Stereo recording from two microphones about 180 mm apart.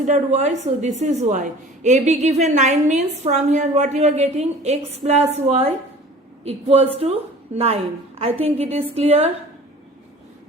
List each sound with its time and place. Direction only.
0.0 s a woman's voice: 40° right (ahead or behind)